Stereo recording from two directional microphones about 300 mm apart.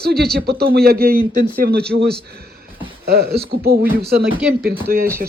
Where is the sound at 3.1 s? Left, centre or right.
Right.